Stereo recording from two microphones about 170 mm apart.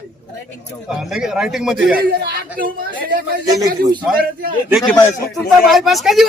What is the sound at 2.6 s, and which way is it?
Speech, 55° right (ahead or behind).